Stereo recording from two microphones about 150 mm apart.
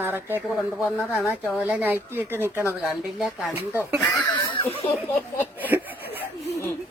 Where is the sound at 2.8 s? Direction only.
Centre (ahead or behind).